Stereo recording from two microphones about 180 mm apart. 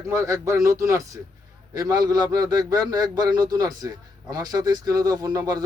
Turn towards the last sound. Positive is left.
turn(degrees=-20)  # may be behind; listen again after turning